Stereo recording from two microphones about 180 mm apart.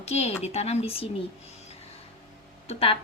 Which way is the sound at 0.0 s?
35° left (ahead or behind).